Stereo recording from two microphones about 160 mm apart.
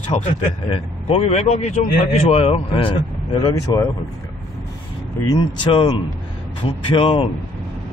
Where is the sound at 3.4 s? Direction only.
25° left (ahead or behind).